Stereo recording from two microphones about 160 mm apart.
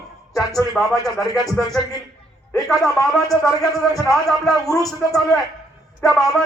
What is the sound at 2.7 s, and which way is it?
A woman's voice, centre (ahead or behind).